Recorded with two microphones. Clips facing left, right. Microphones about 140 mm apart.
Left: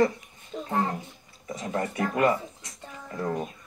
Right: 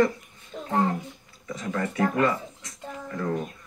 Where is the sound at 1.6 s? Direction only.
30° left (ahead or behind).